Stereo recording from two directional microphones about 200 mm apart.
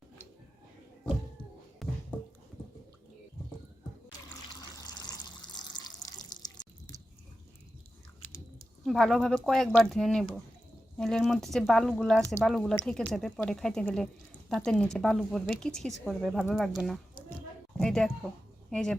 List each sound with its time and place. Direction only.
1.8 s a sound: centre (ahead or behind)
4.4 s water: 20° left (ahead or behind)
8.8 s a woman's voice: centre (ahead or behind)